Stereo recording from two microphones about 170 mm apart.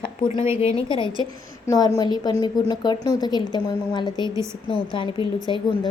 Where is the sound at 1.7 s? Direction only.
20° left (ahead or behind).